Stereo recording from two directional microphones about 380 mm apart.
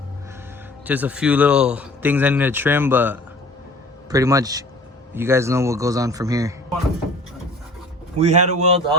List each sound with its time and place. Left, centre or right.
0.9 s a man's voice: centre
8.2 s a man's voice: centre